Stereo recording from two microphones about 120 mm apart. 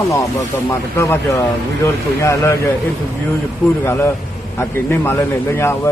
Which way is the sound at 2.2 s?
25° left (ahead or behind).